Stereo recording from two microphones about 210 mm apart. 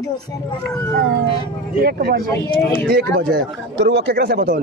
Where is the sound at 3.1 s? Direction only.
50° right (ahead or behind).